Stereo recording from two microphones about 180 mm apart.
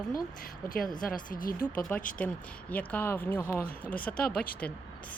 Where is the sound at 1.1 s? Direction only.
50° left (ahead or behind).